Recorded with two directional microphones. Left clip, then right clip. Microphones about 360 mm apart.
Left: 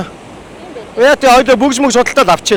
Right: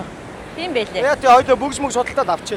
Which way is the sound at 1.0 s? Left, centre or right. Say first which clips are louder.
Left 6 dB; left.